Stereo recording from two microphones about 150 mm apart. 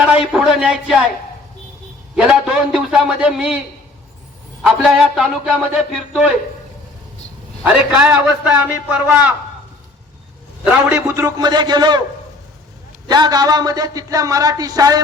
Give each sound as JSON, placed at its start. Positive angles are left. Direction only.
{"t": 0.0, "sound": "a man's voice", "side_deg": -5}
{"t": 2.1, "sound": "a man's voice", "side_deg": -5}
{"t": 4.6, "sound": "a man's voice", "side_deg": -5}
{"t": 7.6, "sound": "speech", "side_deg": -5}
{"t": 10.6, "sound": "speech", "side_deg": -10}
{"t": 13.1, "sound": "speech", "side_deg": -25}